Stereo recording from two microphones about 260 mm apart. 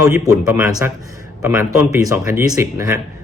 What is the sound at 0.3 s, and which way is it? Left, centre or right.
Speech, centre.